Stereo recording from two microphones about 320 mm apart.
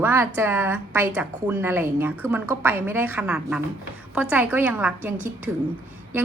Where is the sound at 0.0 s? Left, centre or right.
Centre.